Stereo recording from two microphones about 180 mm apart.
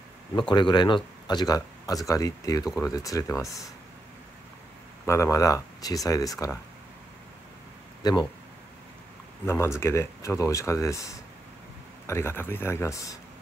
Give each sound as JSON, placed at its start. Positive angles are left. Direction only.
{"t": 0.4, "sound": "speech", "side_deg": 25}
{"t": 5.0, "sound": "speech", "side_deg": 15}
{"t": 8.0, "sound": "speech", "side_deg": 25}
{"t": 9.5, "sound": "speech", "side_deg": 15}